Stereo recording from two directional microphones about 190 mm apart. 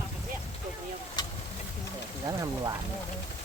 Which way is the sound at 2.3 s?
20° right (ahead or behind).